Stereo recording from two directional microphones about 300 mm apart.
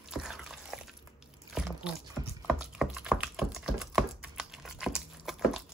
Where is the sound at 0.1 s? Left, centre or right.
Centre.